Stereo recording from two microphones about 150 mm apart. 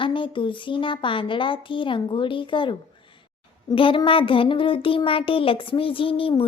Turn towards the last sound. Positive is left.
turn(degrees=35)  # may be behind; listen again after turning